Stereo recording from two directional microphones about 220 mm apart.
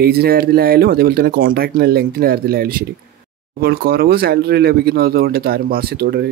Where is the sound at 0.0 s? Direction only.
45° right (ahead or behind).